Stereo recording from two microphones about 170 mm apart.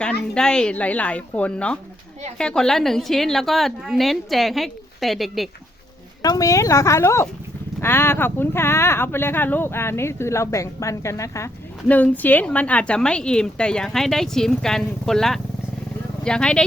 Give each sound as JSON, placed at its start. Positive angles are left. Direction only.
{"t": 0.0, "sound": "a woman's voice", "side_deg": 5}
{"t": 6.2, "sound": "a woman's voice", "side_deg": 20}